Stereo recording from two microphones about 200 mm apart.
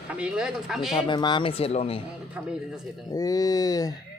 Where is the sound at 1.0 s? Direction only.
25° left (ahead or behind).